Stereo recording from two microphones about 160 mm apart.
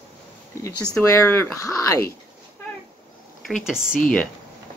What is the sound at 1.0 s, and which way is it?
Speech, 15° left (ahead or behind).